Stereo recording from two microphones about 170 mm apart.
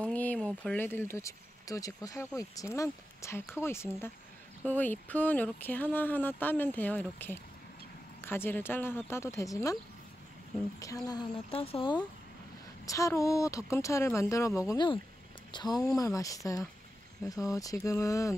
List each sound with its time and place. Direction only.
0.0 s speech: 10° left (ahead or behind)
10.8 s speech: 20° left (ahead or behind)
11.5 s speech: 35° left (ahead or behind)
12.8 s speech: 20° left (ahead or behind)